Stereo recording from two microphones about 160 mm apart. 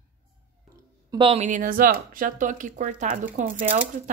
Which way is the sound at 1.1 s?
35° right (ahead or behind).